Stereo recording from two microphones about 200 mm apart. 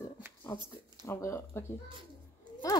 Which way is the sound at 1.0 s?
15° left (ahead or behind).